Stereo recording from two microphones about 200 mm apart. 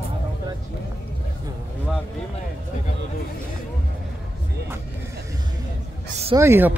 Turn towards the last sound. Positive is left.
turn(degrees=-10)  # may be behind; listen again after turning